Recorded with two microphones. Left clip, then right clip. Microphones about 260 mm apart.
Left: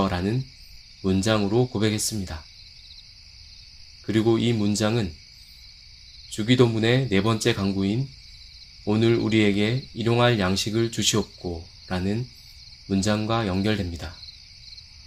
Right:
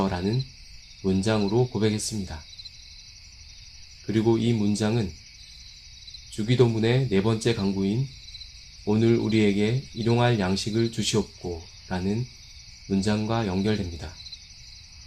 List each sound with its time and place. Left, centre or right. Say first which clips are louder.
1.0 s speech: left 2 dB; left
4.0 s speech: left 2 dB; left
6.3 s speech: left 2 dB; left